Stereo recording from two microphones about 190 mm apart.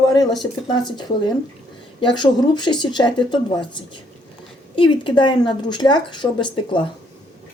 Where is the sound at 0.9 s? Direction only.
20° left (ahead or behind).